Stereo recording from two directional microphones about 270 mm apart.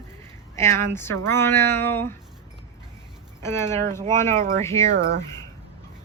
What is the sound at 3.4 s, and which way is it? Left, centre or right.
Speech, centre.